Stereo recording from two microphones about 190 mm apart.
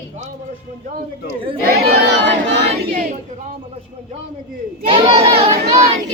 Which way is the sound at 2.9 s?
50° right (ahead or behind).